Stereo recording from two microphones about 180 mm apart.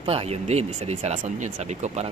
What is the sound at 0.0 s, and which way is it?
Speech, 35° right (ahead or behind).